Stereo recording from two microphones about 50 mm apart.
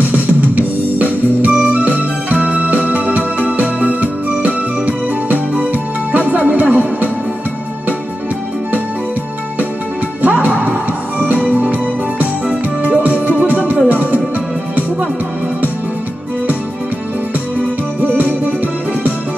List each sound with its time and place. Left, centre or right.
0.1 s music: right
10.2 s music: right
17.6 s music: right